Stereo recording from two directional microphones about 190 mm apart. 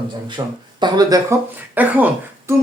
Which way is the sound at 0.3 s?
25° right (ahead or behind).